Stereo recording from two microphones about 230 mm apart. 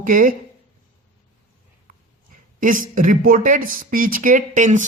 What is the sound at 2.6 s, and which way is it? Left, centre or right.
Speech, right.